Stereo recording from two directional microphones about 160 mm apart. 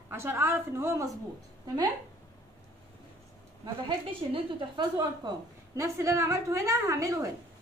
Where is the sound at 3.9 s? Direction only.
30° right (ahead or behind).